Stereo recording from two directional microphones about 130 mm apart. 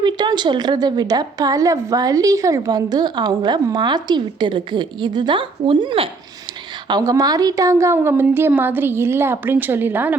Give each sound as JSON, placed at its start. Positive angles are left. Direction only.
{"t": 0.0, "sound": "a woman's voice", "side_deg": -35}
{"t": 6.8, "sound": "a woman's voice", "side_deg": -30}